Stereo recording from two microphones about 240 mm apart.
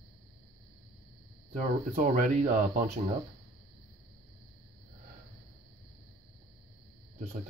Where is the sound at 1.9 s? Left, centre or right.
Right.